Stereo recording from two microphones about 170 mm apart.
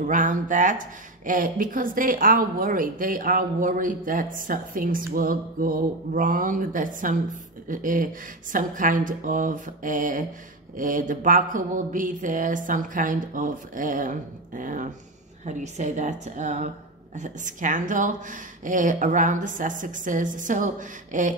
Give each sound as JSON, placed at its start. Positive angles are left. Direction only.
{"t": 0.0, "sound": "speech", "side_deg": -50}